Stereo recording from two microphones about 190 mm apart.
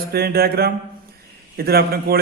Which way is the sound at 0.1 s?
55° right (ahead or behind).